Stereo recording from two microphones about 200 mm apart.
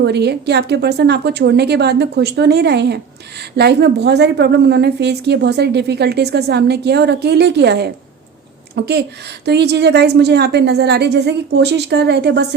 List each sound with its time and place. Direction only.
0.0 s a woman's voice: 55° right (ahead or behind)